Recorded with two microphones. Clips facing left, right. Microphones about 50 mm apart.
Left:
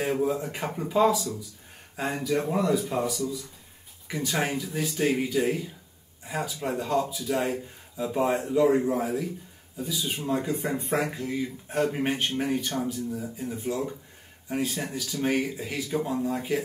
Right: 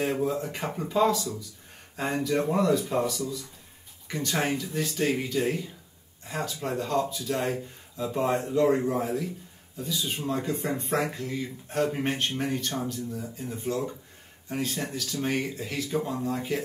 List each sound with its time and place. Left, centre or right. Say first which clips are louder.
0.0 s speech: left 1 dB; centre